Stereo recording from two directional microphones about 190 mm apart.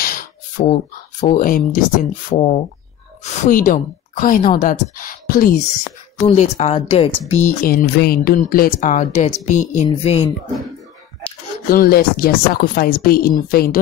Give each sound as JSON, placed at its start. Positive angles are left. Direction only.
{"t": 0.0, "sound": "a sound", "side_deg": 50}
{"t": 1.2, "sound": "speech", "side_deg": 45}
{"t": 2.2, "sound": "speech", "side_deg": 35}
{"t": 3.4, "sound": "speech", "side_deg": 45}
{"t": 6.1, "sound": "speech", "side_deg": 35}
{"t": 7.6, "sound": "speech", "side_deg": 55}
{"t": 11.7, "sound": "speech", "side_deg": 50}